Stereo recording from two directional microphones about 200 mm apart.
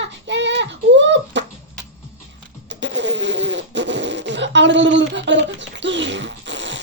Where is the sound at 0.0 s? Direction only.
60° right (ahead or behind).